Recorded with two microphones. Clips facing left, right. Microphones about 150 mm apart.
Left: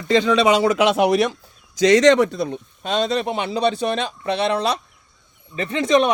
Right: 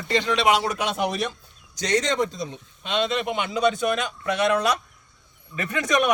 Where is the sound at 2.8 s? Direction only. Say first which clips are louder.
Left 4 dB; 40° left (ahead or behind).